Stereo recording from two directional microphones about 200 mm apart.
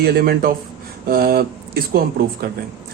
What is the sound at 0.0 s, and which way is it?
Speech, 50° right (ahead or behind).